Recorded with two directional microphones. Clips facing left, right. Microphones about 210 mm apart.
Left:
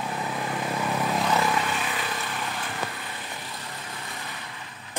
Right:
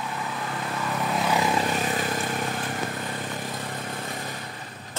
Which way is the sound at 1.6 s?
40° right (ahead or behind).